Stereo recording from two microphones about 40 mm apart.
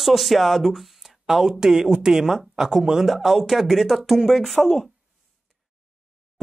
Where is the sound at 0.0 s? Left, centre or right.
Centre.